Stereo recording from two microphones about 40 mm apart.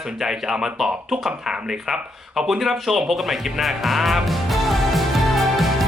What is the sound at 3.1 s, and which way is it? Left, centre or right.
Music, centre.